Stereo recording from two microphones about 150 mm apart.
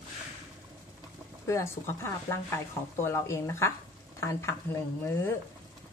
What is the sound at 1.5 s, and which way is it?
Speech, 20° left (ahead or behind).